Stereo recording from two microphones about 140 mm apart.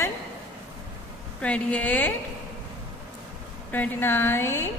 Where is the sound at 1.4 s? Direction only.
10° left (ahead or behind).